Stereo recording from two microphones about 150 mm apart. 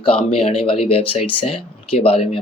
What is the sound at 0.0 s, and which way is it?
Speech, 40° left (ahead or behind).